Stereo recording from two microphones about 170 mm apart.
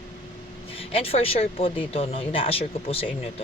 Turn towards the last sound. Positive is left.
turn(degrees=35)  # may be behind; listen again after turning